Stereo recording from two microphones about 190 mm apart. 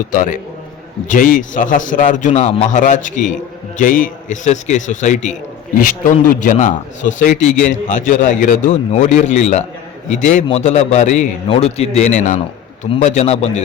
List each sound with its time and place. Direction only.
0.1 s a man's voice: 45° left (ahead or behind)